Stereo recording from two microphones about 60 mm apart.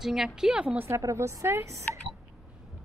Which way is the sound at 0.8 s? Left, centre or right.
Right.